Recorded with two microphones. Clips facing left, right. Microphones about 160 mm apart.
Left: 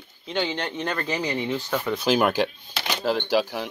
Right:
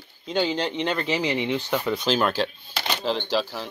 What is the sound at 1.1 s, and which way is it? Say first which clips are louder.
Speech: right 2 dB; 15° right (ahead or behind).